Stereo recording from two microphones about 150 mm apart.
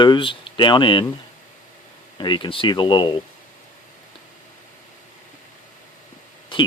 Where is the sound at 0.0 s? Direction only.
35° left (ahead or behind).